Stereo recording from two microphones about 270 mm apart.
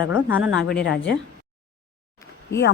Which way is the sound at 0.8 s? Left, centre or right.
Left.